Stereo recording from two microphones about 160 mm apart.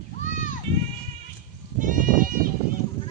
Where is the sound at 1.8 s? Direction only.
55° right (ahead or behind).